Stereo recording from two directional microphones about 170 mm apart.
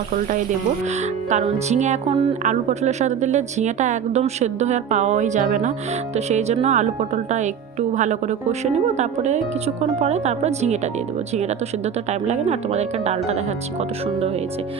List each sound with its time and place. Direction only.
1.3 s a woman's voice: 40° right (ahead or behind)
12.2 s a woman's voice: 40° right (ahead or behind)